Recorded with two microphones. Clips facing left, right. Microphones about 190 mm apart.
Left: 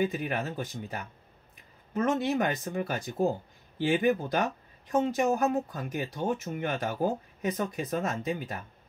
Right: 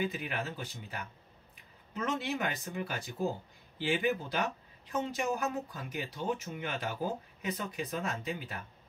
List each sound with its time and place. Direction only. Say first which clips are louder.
0.0 s speech: left 6 dB; 50° left (ahead or behind)
2.0 s speech: left 7 dB; 45° left (ahead or behind)